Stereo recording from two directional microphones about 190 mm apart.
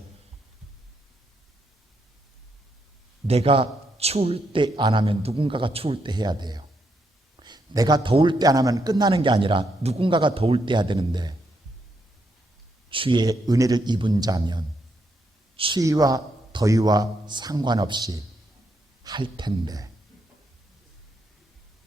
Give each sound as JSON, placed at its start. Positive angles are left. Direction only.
{"t": 3.2, "sound": "a man's voice", "side_deg": -30}
{"t": 12.9, "sound": "a man's voice", "side_deg": -25}
{"t": 15.8, "sound": "a man's voice", "side_deg": -20}